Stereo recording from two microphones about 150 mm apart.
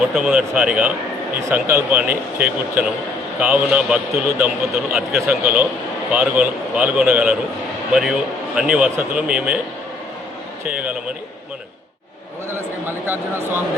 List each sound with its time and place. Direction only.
0.1 s speech: 10° right (ahead or behind)
8.5 s speech: 5° right (ahead or behind)
10.7 s speech: 10° right (ahead or behind)
12.5 s a sound: 15° right (ahead or behind)